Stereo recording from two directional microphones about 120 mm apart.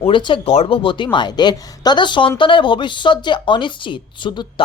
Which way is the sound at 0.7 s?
45° left (ahead or behind).